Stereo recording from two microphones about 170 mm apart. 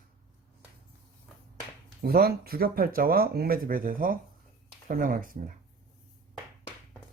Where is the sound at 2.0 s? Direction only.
65° right (ahead or behind).